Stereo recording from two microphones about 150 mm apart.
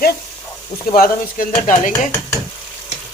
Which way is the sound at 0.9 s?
70° left (ahead or behind).